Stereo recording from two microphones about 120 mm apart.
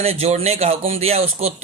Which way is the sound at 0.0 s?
55° right (ahead or behind).